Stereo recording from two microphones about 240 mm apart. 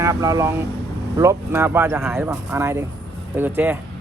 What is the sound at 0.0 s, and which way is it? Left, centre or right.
Speech, centre.